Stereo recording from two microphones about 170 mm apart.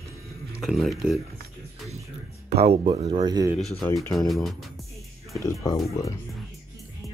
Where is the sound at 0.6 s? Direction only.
Centre (ahead or behind).